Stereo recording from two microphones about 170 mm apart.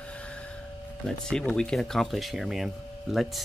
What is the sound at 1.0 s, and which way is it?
Speech, 5° left (ahead or behind).